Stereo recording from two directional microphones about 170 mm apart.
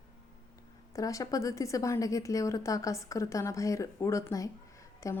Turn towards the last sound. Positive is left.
turn(degrees=15)  # may be behind; listen again after turning